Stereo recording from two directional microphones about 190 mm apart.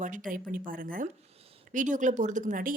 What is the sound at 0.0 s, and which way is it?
Speech, 45° right (ahead or behind).